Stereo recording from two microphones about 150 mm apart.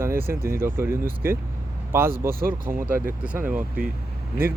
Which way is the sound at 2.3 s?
75° right (ahead or behind).